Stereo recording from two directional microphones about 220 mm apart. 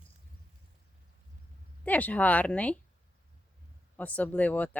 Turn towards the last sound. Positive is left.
turn(degrees=5)  # may be behind; listen again after turning